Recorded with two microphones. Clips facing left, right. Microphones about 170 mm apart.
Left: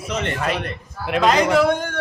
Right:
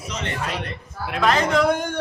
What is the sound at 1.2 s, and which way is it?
Speech, 10° left (ahead or behind).